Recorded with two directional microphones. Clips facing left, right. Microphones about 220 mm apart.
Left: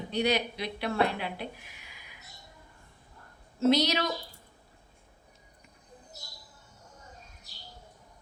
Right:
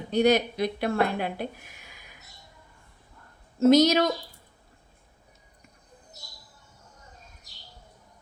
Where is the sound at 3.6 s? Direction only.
45° right (ahead or behind).